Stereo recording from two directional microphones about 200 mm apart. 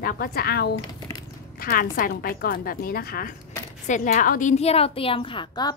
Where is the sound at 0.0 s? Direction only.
50° left (ahead or behind).